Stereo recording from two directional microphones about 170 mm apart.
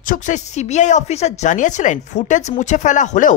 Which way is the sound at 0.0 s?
50° left (ahead or behind).